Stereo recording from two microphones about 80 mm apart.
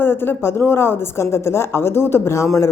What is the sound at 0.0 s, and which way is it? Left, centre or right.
A woman's voice, left.